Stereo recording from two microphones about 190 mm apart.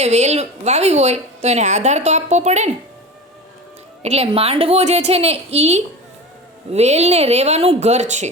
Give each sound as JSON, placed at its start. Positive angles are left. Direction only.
{"t": 0.0, "sound": "a woman's voice", "side_deg": -35}
{"t": 4.0, "sound": "a woman's voice", "side_deg": -35}